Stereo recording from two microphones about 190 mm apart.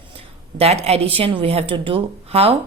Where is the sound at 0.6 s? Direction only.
35° right (ahead or behind).